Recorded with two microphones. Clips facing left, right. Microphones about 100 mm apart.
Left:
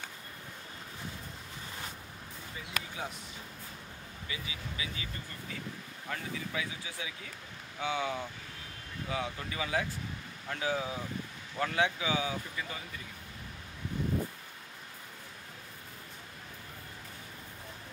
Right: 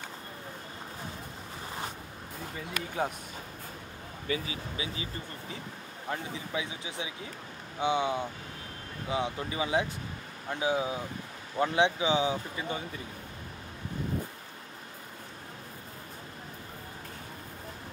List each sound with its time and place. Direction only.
4.3 s speech: 30° right (ahead or behind)